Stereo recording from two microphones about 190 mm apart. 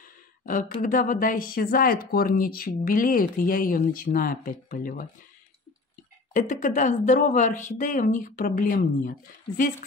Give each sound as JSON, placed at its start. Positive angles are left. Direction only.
{"t": 0.5, "sound": "speech", "side_deg": 45}
{"t": 6.3, "sound": "speech", "side_deg": 40}